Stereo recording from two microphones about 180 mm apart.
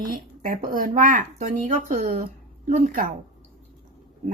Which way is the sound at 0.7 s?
50° right (ahead or behind).